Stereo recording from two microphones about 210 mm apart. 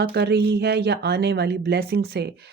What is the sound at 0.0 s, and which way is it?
Speech, 50° right (ahead or behind).